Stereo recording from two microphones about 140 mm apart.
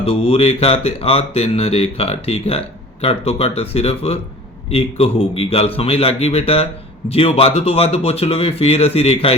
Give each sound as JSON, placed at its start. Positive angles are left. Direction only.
{"t": 0.0, "sound": "speech", "side_deg": 45}